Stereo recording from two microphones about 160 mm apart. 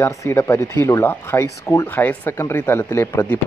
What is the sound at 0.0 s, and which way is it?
Speech, 20° left (ahead or behind).